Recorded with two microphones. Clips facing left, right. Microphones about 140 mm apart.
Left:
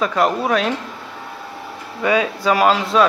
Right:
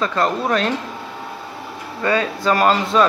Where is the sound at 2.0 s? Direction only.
10° left (ahead or behind).